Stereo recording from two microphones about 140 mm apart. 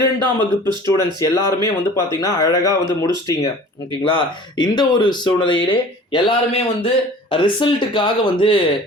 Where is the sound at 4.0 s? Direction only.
35° left (ahead or behind).